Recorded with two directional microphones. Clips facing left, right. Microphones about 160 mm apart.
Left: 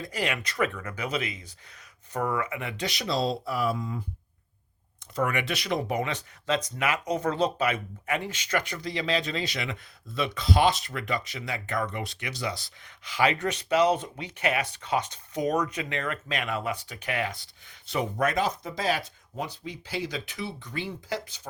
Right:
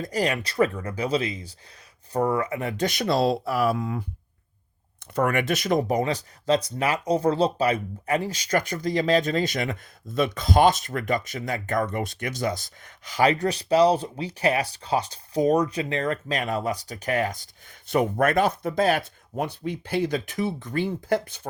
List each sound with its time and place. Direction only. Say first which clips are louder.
0.0 s speech: right 5 dB; 40° right (ahead or behind); by 4.0 s 70° right (ahead or behind)
5.1 s speech: right 5 dB; 50° right (ahead or behind)